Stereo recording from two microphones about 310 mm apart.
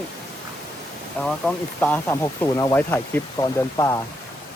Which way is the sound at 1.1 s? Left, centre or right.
Centre.